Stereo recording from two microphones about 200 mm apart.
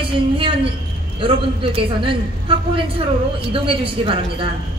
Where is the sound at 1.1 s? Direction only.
25° right (ahead or behind).